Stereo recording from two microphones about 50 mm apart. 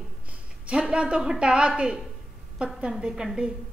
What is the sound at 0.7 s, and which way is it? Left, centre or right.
A woman's voice, right.